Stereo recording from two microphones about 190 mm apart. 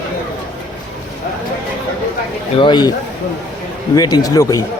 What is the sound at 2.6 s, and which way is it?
Speech, 25° left (ahead or behind).